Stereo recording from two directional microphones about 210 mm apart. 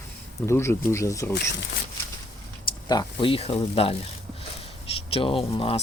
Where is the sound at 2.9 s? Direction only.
20° left (ahead or behind).